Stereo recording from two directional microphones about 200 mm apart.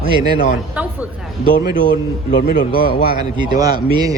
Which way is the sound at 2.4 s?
50° left (ahead or behind).